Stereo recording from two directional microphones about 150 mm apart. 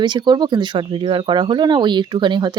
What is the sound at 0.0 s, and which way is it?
Speech, 30° right (ahead or behind).